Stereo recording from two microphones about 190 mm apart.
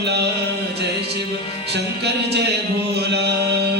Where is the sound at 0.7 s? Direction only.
60° right (ahead or behind).